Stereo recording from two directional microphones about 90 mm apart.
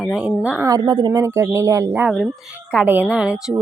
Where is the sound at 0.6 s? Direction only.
45° right (ahead or behind).